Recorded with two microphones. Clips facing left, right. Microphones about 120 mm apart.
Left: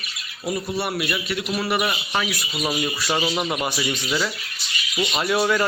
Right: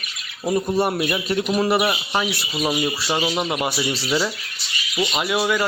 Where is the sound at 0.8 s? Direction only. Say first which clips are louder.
Right 5 dB; 40° right (ahead or behind).